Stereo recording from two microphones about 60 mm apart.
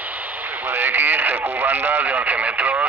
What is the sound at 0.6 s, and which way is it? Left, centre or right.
Speech, right.